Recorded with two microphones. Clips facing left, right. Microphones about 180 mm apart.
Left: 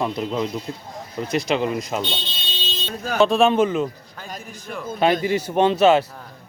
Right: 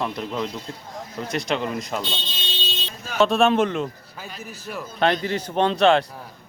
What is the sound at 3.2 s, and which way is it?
A man's voice, centre (ahead or behind).